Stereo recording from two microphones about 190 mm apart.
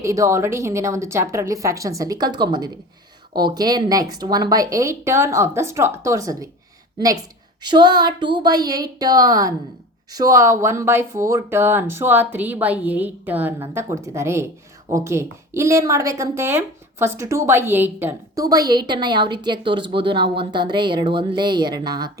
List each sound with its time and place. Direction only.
0.0 s speech: 15° right (ahead or behind)
7.6 s speech: 25° right (ahead or behind)